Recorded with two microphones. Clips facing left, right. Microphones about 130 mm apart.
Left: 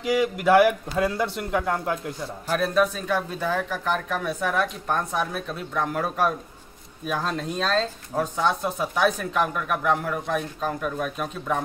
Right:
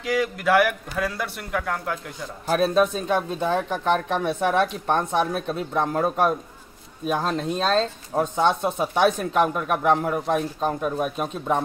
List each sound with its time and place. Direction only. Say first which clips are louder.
0.0 s a man's voice: left 1 dB; 15° left (ahead or behind)
2.6 s speech: right 2 dB; 25° right (ahead or behind)